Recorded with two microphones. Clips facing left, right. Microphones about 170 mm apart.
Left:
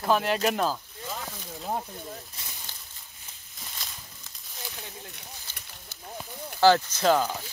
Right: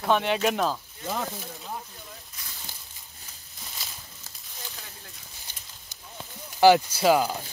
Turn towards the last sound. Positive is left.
turn(degrees=-10)  # may be behind; listen again after turning